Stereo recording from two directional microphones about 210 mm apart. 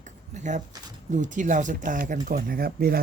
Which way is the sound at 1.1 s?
35° right (ahead or behind).